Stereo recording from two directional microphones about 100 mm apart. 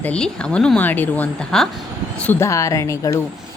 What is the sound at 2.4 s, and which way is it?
Speech, 30° left (ahead or behind).